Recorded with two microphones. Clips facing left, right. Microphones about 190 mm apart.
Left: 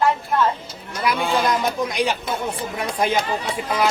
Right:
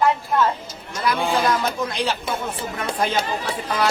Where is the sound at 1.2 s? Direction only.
10° right (ahead or behind).